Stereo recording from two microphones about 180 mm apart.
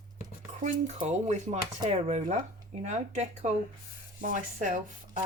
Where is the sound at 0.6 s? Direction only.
40° right (ahead or behind).